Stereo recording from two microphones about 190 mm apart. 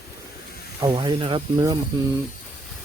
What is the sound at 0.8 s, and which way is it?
Speech, 20° right (ahead or behind).